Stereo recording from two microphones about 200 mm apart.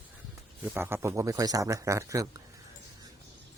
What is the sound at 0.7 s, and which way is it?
A man's voice, 10° right (ahead or behind).